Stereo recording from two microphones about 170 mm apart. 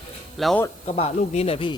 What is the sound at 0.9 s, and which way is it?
Speech, 40° left (ahead or behind).